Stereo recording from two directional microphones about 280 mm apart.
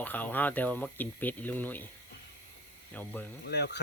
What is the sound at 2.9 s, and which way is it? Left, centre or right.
Speech, centre.